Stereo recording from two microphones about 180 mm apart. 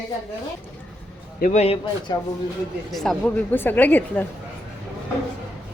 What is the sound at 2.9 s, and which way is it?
A woman's voice, centre (ahead or behind).